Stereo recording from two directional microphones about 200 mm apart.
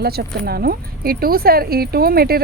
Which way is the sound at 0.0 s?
50° right (ahead or behind).